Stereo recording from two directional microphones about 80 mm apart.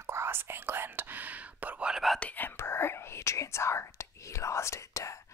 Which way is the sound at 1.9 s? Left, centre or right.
Centre.